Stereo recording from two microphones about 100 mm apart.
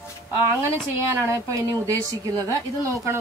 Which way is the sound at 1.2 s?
30° right (ahead or behind).